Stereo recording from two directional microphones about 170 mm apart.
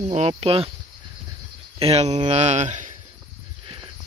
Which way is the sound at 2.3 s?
40° right (ahead or behind).